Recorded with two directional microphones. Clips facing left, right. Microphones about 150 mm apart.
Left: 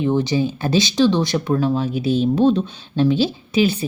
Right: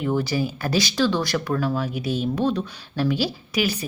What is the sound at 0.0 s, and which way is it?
Speech, 20° left (ahead or behind).